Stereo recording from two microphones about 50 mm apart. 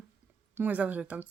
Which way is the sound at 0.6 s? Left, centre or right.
Right.